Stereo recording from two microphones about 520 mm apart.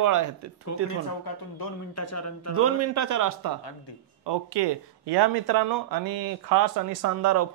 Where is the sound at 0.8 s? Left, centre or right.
Left.